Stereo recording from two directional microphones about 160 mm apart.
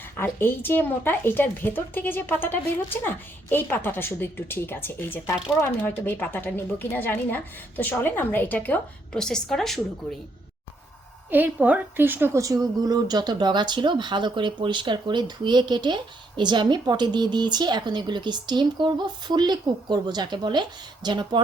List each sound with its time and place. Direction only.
0.2 s speech: 15° left (ahead or behind)
11.3 s a woman's voice: 10° right (ahead or behind); by 21.4 s 25° right (ahead or behind)